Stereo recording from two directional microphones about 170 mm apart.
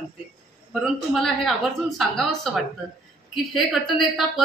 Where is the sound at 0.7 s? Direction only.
Centre (ahead or behind).